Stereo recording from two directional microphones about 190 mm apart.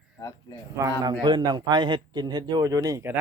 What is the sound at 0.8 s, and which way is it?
A man's voice, 20° right (ahead or behind).